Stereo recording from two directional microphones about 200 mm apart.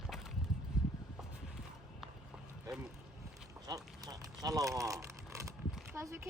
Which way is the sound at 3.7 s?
20° right (ahead or behind).